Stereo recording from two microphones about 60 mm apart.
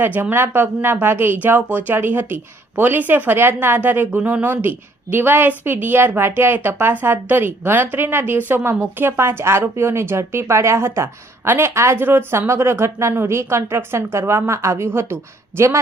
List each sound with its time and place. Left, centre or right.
0.0 s speech: right
4.2 s speech: right
4.4 s a woman's voice: right
11.7 s a woman's voice: right
11.9 s a woman's voice: right